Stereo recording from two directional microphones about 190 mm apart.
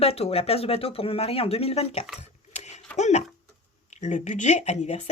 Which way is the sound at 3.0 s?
35° left (ahead or behind).